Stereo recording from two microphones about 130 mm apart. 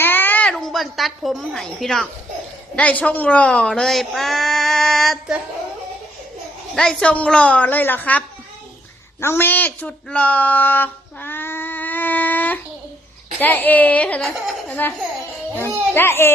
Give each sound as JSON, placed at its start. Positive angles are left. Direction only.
{"t": 0.0, "sound": "a sound", "side_deg": 15}
{"t": 2.7, "sound": "speech", "side_deg": 10}
{"t": 6.7, "sound": "a woman's voice", "side_deg": 5}
{"t": 9.2, "sound": "a woman's voice", "side_deg": 15}